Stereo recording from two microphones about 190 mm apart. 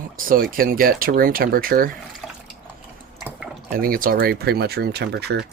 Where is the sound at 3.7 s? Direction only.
50° right (ahead or behind).